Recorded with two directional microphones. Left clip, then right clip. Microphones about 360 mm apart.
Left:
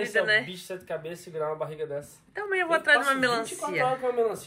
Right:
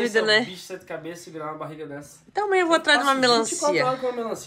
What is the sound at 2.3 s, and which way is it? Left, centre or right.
Speech, centre.